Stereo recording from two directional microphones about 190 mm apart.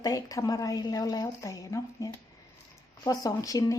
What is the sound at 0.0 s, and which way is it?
Speech, 20° left (ahead or behind).